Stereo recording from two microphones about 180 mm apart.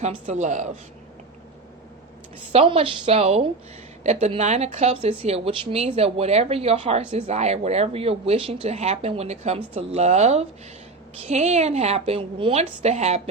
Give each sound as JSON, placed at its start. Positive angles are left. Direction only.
{"t": 0.0, "sound": "speech", "side_deg": -40}
{"t": 2.5, "sound": "speech", "side_deg": -30}